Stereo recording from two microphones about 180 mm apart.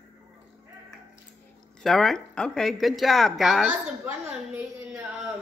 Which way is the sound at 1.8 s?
Centre (ahead or behind).